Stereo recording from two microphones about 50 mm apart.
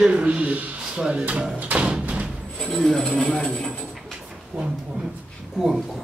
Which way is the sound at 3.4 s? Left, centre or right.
Centre.